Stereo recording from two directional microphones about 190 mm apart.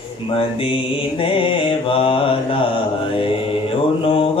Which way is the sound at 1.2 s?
30° left (ahead or behind).